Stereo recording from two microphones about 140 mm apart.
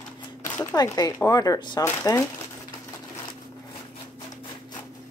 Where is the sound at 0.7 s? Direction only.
30° left (ahead or behind).